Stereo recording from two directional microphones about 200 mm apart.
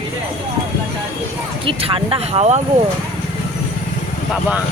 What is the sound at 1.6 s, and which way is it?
Speech, 25° right (ahead or behind).